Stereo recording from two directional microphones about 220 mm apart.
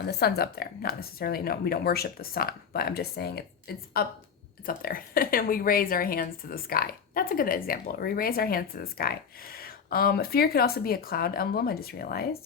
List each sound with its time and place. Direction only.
0.0 s a woman's voice: 45° left (ahead or behind)